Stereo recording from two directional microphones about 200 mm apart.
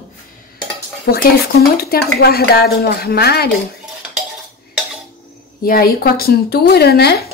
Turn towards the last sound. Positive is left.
turn(degrees=50)  # may be behind; listen again after turning